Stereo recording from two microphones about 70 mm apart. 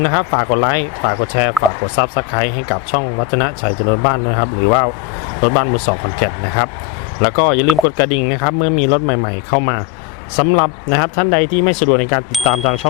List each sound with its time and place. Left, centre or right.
0.0 s speech: left
12.3 s speech: centre